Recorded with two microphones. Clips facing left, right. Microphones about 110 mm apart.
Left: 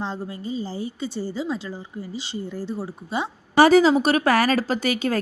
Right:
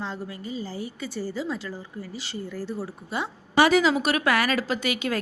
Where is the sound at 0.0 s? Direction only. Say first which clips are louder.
Left 4 dB; 30° left (ahead or behind).